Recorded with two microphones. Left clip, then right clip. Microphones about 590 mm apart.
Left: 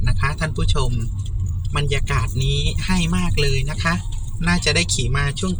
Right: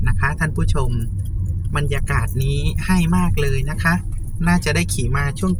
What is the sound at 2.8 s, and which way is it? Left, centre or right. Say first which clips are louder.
Speech: right 6 dB; right.